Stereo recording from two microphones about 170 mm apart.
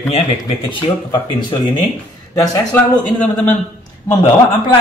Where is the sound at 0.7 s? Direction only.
25° left (ahead or behind).